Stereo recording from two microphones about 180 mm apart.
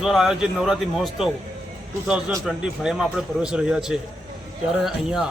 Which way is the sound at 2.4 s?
5° right (ahead or behind).